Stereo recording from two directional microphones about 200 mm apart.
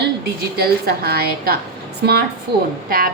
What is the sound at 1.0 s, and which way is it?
Speech, 50° right (ahead or behind).